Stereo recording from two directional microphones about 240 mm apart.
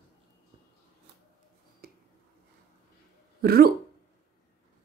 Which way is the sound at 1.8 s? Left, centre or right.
Right.